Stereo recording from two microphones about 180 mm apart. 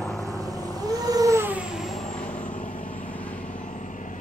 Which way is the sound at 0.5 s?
20° right (ahead or behind).